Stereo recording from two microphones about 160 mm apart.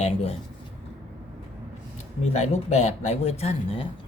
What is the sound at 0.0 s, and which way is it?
Speech, 40° left (ahead or behind).